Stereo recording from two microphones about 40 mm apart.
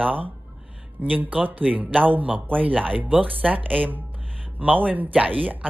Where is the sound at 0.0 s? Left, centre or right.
Right.